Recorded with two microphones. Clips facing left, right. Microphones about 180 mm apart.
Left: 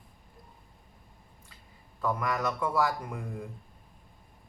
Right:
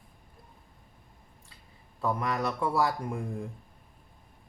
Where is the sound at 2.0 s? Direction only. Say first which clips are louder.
Right 1 dB; 25° right (ahead or behind).